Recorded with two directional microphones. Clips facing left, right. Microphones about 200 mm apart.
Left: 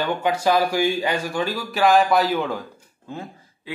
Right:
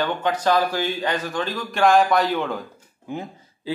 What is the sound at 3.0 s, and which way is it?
Speech, 20° right (ahead or behind).